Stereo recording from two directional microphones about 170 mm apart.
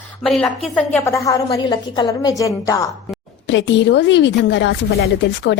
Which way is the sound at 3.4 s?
90° left.